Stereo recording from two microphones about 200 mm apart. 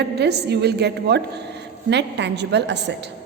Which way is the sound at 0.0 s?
55° right (ahead or behind).